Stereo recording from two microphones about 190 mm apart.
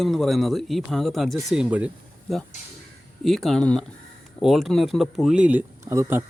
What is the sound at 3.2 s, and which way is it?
Speech, centre (ahead or behind).